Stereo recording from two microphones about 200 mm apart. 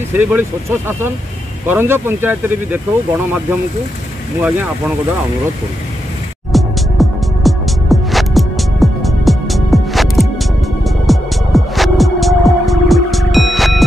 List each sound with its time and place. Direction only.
0.2 s speech: 10° right (ahead or behind)
4.4 s speech: 10° right (ahead or behind)
6.5 s music: centre (ahead or behind)